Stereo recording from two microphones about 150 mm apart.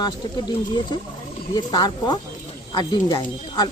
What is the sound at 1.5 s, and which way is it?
A woman's voice, 25° left (ahead or behind).